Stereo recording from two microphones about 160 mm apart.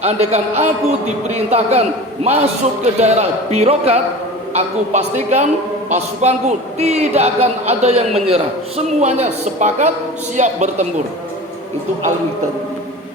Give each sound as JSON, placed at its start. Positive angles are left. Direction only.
{"t": 0.0, "sound": "a man's voice", "side_deg": -45}